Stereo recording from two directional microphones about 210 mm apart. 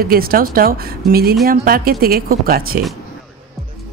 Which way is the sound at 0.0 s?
45° right (ahead or behind).